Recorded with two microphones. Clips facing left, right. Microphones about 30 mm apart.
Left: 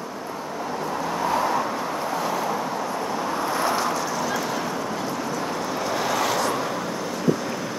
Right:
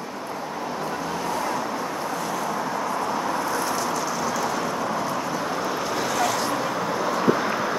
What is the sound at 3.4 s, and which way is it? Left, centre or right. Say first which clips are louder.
Vehicle: left 2 dB; left.